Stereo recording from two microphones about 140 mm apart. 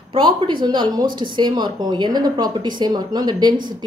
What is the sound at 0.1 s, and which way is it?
Speech, 35° right (ahead or behind).